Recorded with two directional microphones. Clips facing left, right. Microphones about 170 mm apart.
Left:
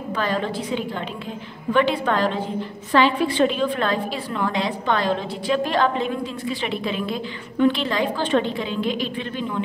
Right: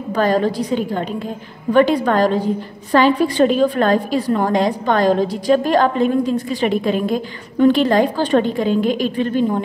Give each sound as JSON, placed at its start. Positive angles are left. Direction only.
{"t": 0.1, "sound": "a woman's voice", "side_deg": -40}